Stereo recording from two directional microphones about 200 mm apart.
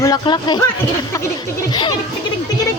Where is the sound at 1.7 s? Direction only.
20° left (ahead or behind).